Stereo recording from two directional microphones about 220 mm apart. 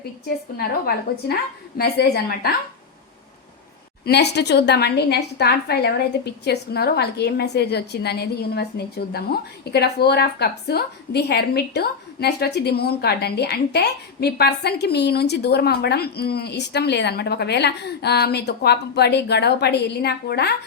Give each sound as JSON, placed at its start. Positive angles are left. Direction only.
{"t": 0.5, "sound": "a woman's voice", "side_deg": 45}
{"t": 4.0, "sound": "a woman's voice", "side_deg": 50}